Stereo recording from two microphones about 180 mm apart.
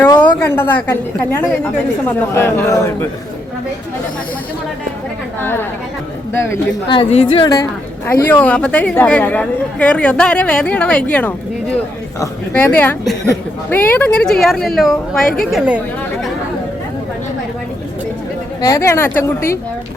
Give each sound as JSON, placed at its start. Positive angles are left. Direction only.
{"t": 0.2, "sound": "a woman's voice", "side_deg": 10}
{"t": 5.4, "sound": "a woman's voice", "side_deg": 10}
{"t": 6.8, "sound": "a woman's voice", "side_deg": 30}
{"t": 12.5, "sound": "a woman's voice", "side_deg": 10}
{"t": 18.6, "sound": "a woman's voice", "side_deg": 15}